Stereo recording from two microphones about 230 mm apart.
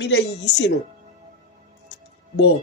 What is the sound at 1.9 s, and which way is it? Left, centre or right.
Music, left.